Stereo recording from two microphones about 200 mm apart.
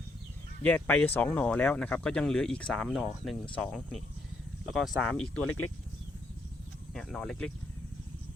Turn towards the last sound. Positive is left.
turn(degrees=5)  # may be behind; listen again after turning